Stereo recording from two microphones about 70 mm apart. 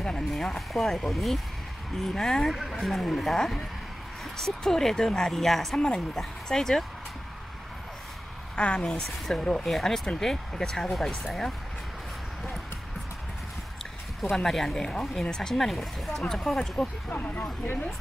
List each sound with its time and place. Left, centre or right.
0.0 s speech: centre
2.5 s speech: centre
8.5 s speech: centre
14.3 s speech: centre
17.1 s speech: left